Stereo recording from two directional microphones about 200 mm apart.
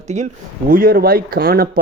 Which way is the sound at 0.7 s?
45° right (ahead or behind).